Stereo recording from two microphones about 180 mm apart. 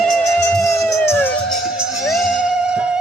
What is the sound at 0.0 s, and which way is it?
Music, 5° left (ahead or behind).